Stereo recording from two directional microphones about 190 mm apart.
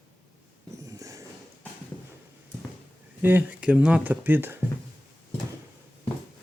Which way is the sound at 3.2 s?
10° right (ahead or behind).